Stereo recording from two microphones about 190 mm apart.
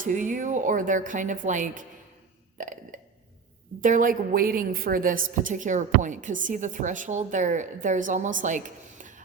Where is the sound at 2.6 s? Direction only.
45° right (ahead or behind).